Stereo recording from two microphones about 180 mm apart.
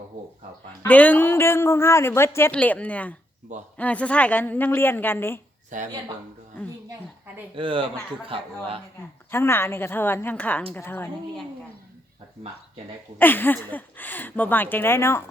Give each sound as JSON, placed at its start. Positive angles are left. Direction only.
{"t": 0.8, "sound": "a man's voice", "side_deg": 10}
{"t": 5.7, "sound": "speech", "side_deg": -45}
{"t": 7.5, "sound": "speech", "side_deg": -30}
{"t": 9.3, "sound": "a man's voice", "side_deg": 15}
{"t": 13.1, "sound": "a man's voice", "side_deg": 10}